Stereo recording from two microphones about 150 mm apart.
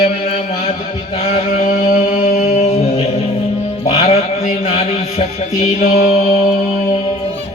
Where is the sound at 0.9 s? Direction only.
40° left (ahead or behind).